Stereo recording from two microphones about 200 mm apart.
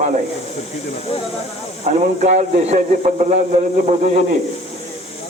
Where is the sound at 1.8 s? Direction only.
35° right (ahead or behind).